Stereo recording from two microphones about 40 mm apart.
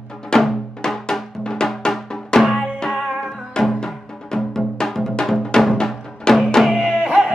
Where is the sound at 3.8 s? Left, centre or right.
Centre.